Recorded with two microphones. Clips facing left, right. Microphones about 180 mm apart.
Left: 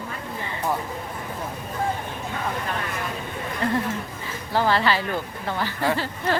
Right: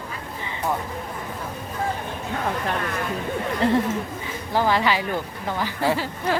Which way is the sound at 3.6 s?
30° right (ahead or behind).